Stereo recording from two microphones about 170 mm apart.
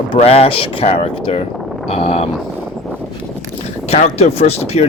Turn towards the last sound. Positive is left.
turn(degrees=40)  # may be behind; listen again after turning